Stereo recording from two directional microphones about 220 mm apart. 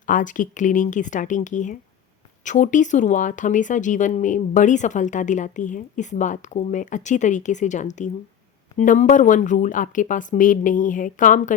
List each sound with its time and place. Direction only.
0.0 s speech: 35° left (ahead or behind)